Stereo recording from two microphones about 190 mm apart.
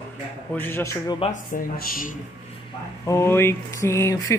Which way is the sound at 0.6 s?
10° left (ahead or behind).